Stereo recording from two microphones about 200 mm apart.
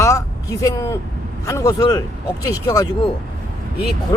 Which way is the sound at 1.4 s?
15° left (ahead or behind).